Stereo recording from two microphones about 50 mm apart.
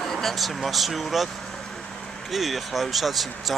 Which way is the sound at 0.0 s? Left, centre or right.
Centre.